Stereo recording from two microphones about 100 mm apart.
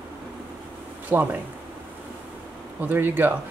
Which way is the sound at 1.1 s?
20° right (ahead or behind).